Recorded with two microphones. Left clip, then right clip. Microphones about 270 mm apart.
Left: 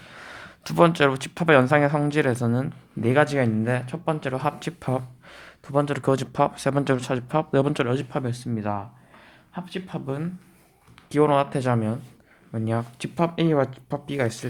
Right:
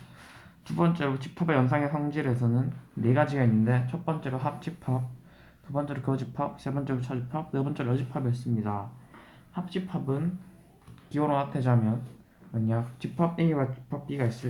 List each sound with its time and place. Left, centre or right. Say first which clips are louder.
0.4 s speech: left 10 dB; left